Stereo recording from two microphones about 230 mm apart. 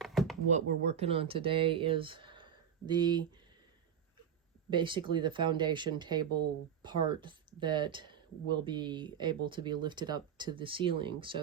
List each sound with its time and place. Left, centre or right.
0.0 s a sound: centre
0.5 s speech: right
4.7 s speech: right